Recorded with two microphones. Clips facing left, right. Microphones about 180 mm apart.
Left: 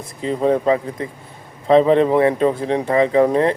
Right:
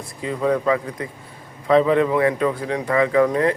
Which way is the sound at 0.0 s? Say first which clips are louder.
Left 4 dB; 25° left (ahead or behind).